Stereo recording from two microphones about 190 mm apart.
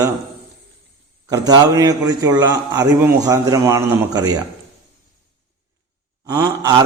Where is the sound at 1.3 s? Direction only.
20° right (ahead or behind).